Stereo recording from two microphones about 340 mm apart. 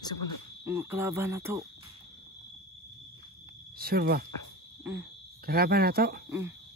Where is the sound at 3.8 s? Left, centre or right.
Right.